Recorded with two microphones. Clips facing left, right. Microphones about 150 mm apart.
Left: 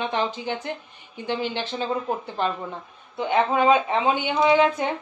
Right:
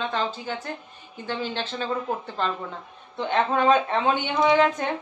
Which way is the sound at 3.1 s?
10° left (ahead or behind).